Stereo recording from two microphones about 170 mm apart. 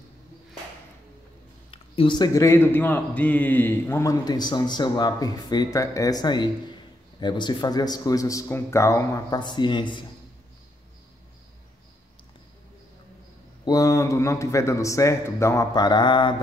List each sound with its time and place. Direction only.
1.7 s a man's voice: 30° left (ahead or behind)
13.7 s speech: 20° left (ahead or behind)